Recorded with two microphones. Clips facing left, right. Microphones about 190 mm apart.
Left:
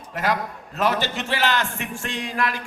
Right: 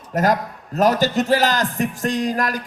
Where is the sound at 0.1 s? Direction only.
40° right (ahead or behind).